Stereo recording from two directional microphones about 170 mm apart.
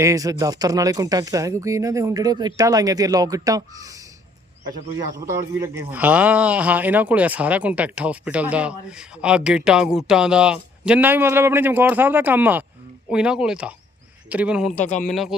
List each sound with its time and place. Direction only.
0.0 s speech: 20° right (ahead or behind)
5.2 s speech: 15° right (ahead or behind)
14.7 s a man's voice: 50° left (ahead or behind)
15.0 s speech: centre (ahead or behind)